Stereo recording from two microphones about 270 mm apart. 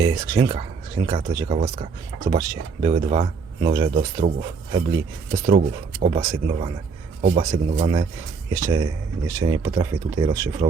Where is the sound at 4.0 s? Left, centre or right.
Right.